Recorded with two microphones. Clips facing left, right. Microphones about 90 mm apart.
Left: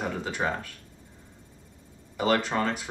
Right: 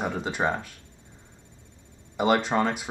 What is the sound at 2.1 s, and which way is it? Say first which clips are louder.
Speech: right 3 dB; 15° right (ahead or behind).